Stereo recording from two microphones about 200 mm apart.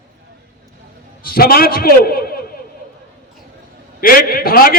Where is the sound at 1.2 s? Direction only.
50° left (ahead or behind).